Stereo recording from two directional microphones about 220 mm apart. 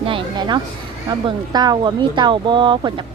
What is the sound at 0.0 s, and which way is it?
Speech, 25° right (ahead or behind).